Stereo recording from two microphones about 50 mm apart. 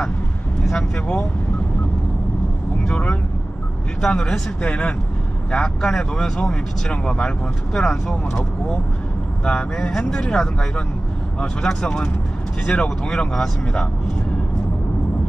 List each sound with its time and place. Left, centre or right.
2.9 s speech: left
9.4 s speech: centre
11.4 s speech: centre